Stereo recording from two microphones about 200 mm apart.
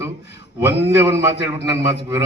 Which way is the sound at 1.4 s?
60° left (ahead or behind).